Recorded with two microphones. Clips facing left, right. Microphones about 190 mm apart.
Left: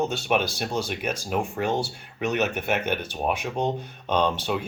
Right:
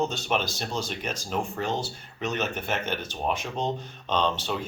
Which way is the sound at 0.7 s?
55° left (ahead or behind).